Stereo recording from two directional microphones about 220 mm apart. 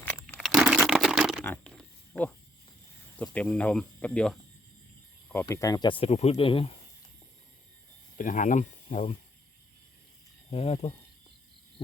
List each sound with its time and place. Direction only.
0.0 s crumpling: 5° left (ahead or behind)
1.5 s a sound: 5° left (ahead or behind)
3.2 s speech: 5° left (ahead or behind); by 6.7 s 25° left (ahead or behind)
8.2 s speech: 35° left (ahead or behind)
10.5 s speech: 30° left (ahead or behind)